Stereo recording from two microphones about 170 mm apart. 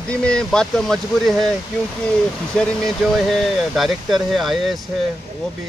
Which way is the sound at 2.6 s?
Centre (ahead or behind).